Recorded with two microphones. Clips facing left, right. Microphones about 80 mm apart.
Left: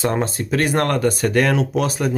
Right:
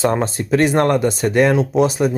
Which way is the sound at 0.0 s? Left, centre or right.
Right.